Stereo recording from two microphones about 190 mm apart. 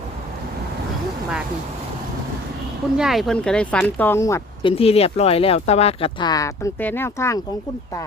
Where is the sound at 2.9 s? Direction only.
Centre (ahead or behind); by 4.4 s 15° left (ahead or behind).